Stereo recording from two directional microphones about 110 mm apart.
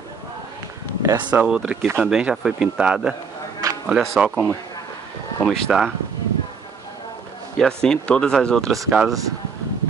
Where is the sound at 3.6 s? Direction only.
30° right (ahead or behind).